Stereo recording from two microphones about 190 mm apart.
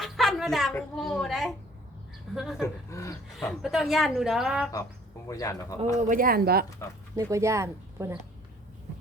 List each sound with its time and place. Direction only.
0.0 s speech: centre (ahead or behind)
2.6 s speech: 15° left (ahead or behind)
3.3 s speech: centre (ahead or behind)
5.3 s speech: 15° left (ahead or behind)
6.0 s speech: 45° right (ahead or behind)
7.2 s speech: 15° right (ahead or behind)